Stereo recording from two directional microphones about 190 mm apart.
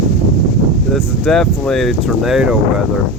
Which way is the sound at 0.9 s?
Centre (ahead or behind).